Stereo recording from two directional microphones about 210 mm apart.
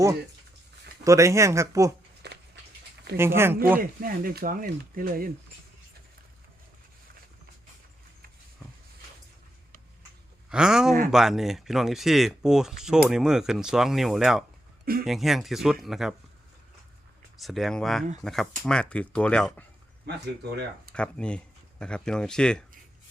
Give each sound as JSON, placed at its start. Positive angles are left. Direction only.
{"t": 1.0, "sound": "speech", "side_deg": -15}
{"t": 2.2, "sound": "a sound", "side_deg": -55}
{"t": 3.2, "sound": "speech", "side_deg": -10}
{"t": 3.8, "sound": "speech", "side_deg": -45}
{"t": 10.5, "sound": "speech", "side_deg": -5}
{"t": 17.4, "sound": "speech", "side_deg": 0}
{"t": 20.9, "sound": "speech", "side_deg": 5}